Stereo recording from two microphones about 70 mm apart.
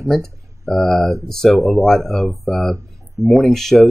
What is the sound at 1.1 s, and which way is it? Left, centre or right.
Speech, right.